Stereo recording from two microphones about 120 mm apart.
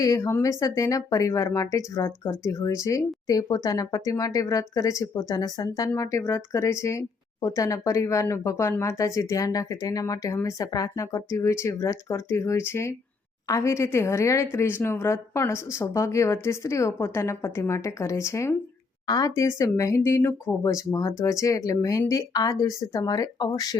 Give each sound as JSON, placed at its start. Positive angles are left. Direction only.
{"t": 0.0, "sound": "speech", "side_deg": 30}